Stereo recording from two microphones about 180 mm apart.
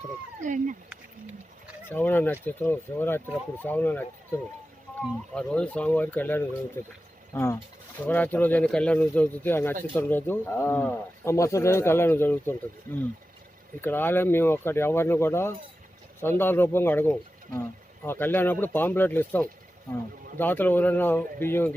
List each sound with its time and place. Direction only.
0.4 s speech: 45° right (ahead or behind)
1.9 s speech: 10° left (ahead or behind)
13.8 s speech: 10° left (ahead or behind)